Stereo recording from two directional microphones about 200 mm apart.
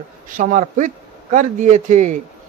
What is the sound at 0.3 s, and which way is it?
A man's voice, 40° right (ahead or behind).